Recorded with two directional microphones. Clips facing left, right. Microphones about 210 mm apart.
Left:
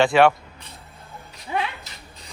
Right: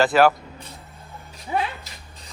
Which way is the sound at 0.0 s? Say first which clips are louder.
Left 1 dB; centre (ahead or behind).